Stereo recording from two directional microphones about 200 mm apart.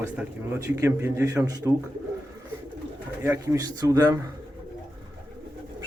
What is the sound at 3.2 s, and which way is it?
Speech, 15° right (ahead or behind).